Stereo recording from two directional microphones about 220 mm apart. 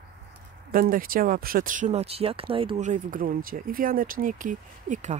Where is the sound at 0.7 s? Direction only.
40° right (ahead or behind).